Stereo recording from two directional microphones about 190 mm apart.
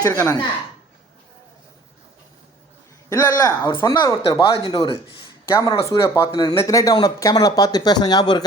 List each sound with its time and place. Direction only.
0.0 s a woman's voice: 15° left (ahead or behind)
3.1 s speech: 15° left (ahead or behind)